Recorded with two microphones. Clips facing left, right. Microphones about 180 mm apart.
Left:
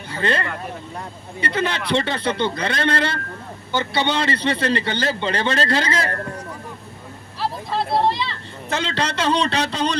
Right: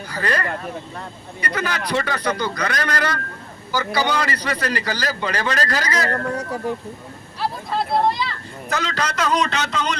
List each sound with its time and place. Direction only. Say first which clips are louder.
0.1 s a man's voice: left 1 dB; 25° left (ahead or behind)
8.0 s a man's voice: even; 30° left (ahead or behind)